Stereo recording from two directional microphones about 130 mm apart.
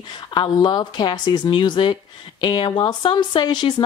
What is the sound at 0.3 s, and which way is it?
A woman's voice, 35° left (ahead or behind).